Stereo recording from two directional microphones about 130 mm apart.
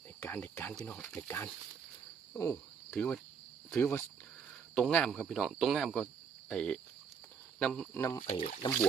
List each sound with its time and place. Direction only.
0.2 s speech: 10° left (ahead or behind)
2.3 s speech: 15° left (ahead or behind)
8.0 s speech: 20° left (ahead or behind)
8.6 s speech: 35° left (ahead or behind)